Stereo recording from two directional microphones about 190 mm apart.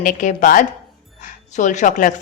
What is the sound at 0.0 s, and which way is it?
A woman's voice, 40° left (ahead or behind).